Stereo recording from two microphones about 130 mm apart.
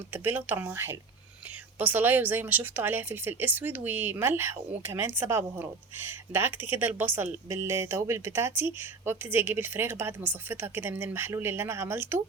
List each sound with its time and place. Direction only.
0.1 s speech: 15° right (ahead or behind)